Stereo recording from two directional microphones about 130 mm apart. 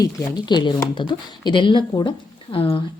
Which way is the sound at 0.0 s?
30° left (ahead or behind).